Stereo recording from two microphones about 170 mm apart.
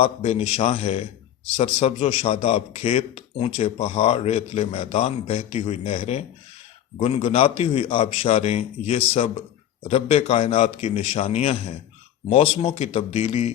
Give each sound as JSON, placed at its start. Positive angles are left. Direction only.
{"t": 0.0, "sound": "a man's voice", "side_deg": 40}